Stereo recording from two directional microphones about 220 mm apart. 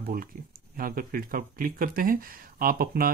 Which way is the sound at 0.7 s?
40° right (ahead or behind).